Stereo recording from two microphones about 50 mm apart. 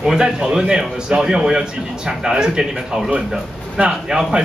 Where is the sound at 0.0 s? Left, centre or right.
Centre.